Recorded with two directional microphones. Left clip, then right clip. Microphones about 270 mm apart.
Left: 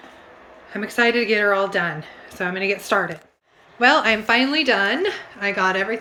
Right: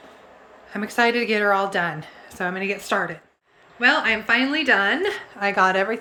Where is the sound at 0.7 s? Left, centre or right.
Centre.